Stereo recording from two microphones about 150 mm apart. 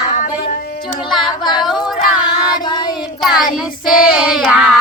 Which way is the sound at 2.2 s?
30° left (ahead or behind).